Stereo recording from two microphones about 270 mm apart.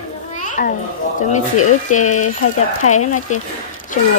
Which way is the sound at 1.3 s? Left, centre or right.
Left.